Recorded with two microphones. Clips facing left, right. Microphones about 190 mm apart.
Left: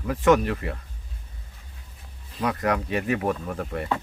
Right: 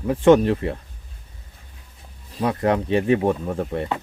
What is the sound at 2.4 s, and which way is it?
Speech, 30° right (ahead or behind).